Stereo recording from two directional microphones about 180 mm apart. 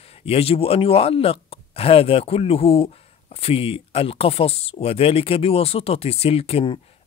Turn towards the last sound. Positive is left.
turn(degrees=30)  # may be behind; listen again after turning